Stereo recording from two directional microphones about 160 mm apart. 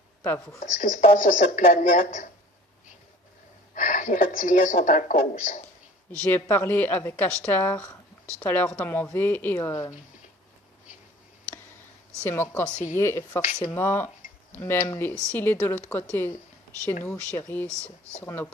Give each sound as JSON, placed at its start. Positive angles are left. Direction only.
{"t": 0.2, "sound": "speech", "side_deg": 15}
{"t": 0.6, "sound": "speech", "side_deg": 55}
{"t": 3.7, "sound": "a woman's voice", "side_deg": 55}
{"t": 6.1, "sound": "speech", "side_deg": 10}
{"t": 12.2, "sound": "speech", "side_deg": 15}
{"t": 17.0, "sound": "speech", "side_deg": 10}